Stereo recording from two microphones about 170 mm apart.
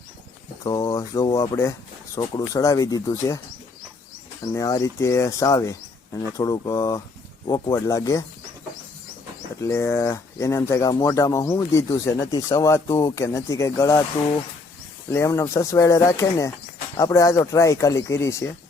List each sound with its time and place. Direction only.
0.6 s speech: 20° left (ahead or behind)
4.5 s speech: 20° left (ahead or behind)
9.6 s speech: 20° left (ahead or behind)